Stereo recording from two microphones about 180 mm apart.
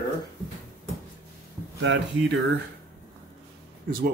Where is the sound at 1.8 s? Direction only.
90° right.